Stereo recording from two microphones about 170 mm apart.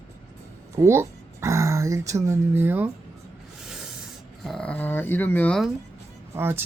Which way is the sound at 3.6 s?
5° right (ahead or behind).